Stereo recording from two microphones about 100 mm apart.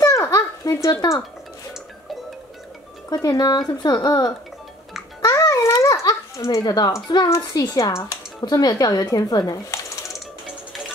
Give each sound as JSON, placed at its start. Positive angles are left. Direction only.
{"t": 0.0, "sound": "babbling", "side_deg": 35}
{"t": 0.8, "sound": "speech", "side_deg": 30}
{"t": 3.1, "sound": "speech", "side_deg": 40}
{"t": 5.2, "sound": "babbling", "side_deg": 30}
{"t": 6.6, "sound": "speech", "side_deg": 40}